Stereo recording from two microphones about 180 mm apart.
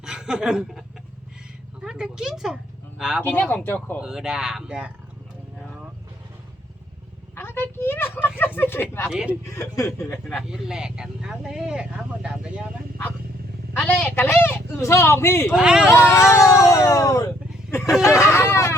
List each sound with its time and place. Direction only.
0.0 s chuckle: 5° right (ahead or behind)
1.8 s speech: 5° right (ahead or behind)
3.2 s speech: 10° left (ahead or behind)
4.0 s speech: 5° right (ahead or behind)
7.3 s a sound: 10° left (ahead or behind)
8.5 s speech: 10° left (ahead or behind)
9.0 s speech: 5° right (ahead or behind)
9.3 s speech: 15° left (ahead or behind)
10.2 s speech: centre (ahead or behind)
13.7 s speech: 10° left (ahead or behind)
15.5 s speech: 5° right (ahead or behind)
15.9 s speech: 15° left (ahead or behind)